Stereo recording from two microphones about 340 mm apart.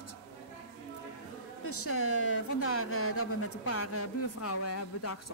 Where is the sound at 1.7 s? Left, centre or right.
Left.